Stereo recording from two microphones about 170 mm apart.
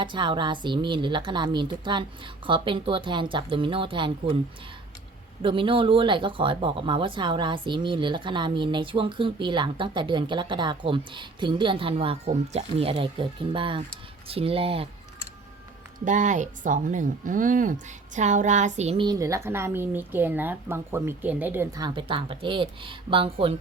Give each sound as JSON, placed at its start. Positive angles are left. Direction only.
{"t": 0.0, "sound": "speech", "side_deg": -30}
{"t": 5.4, "sound": "speech", "side_deg": -30}
{"t": 16.0, "sound": "a woman's voice", "side_deg": -45}
{"t": 19.0, "sound": "a woman's voice", "side_deg": -20}
{"t": 21.7, "sound": "speech", "side_deg": -25}